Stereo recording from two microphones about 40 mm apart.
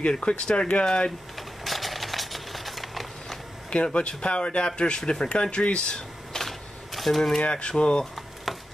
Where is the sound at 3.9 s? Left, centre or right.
Left.